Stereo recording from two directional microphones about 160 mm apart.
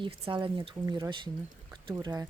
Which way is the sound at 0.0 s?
30° right (ahead or behind).